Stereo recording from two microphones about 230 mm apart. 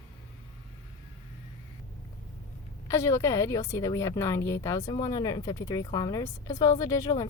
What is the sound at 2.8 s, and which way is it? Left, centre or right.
A woman's voice, centre.